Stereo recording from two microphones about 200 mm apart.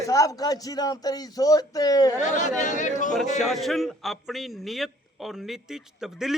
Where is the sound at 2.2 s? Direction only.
40° left (ahead or behind).